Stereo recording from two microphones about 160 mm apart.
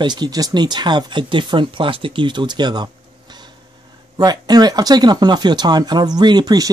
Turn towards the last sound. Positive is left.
turn(degrees=-25)  # may be behind; listen again after turning